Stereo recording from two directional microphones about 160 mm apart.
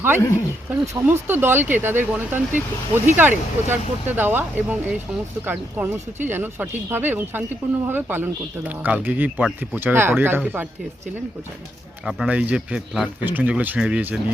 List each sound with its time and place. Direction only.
0.2 s speech: 20° left (ahead or behind)
1.0 s speech: 15° right (ahead or behind)
12.0 s speech: 5° right (ahead or behind)